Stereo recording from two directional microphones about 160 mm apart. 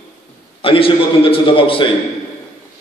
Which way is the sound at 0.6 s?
35° left (ahead or behind).